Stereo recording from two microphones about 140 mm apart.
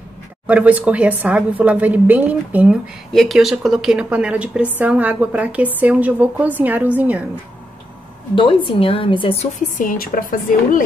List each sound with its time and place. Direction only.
0.5 s a woman's voice: 10° right (ahead or behind)
3.1 s a woman's voice: centre (ahead or behind)
8.4 s a woman's voice: 35° left (ahead or behind)
9.8 s speech: 75° left (ahead or behind)